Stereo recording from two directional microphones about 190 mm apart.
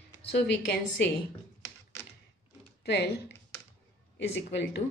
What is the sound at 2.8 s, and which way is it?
Speech, 60° left (ahead or behind).